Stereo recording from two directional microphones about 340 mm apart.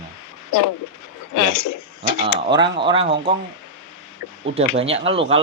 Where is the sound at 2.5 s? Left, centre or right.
Centre.